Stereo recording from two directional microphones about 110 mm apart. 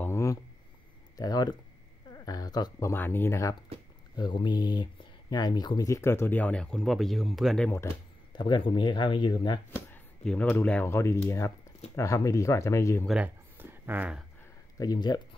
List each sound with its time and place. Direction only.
0.0 s a sound: 25° left (ahead or behind)
1.1 s speech: 35° left (ahead or behind)
2.9 s speech: 20° left (ahead or behind)
4.2 s speech: 45° left (ahead or behind); by 7.7 s 5° left (ahead or behind)
8.4 s speech: 45° left (ahead or behind)
9.7 s a sound: 20° left (ahead or behind)
10.5 s speech: 15° left (ahead or behind)
13.2 s a sound: 20° right (ahead or behind)
14.8 s speech: 40° left (ahead or behind)